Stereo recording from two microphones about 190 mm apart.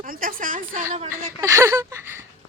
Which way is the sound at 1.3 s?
15° right (ahead or behind).